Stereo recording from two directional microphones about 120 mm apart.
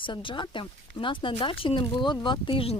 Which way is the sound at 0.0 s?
45° left (ahead or behind).